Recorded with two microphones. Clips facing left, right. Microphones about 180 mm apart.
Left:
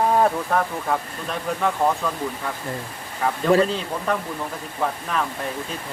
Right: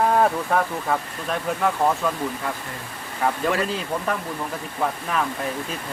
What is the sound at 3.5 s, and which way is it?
Speech, 35° left (ahead or behind).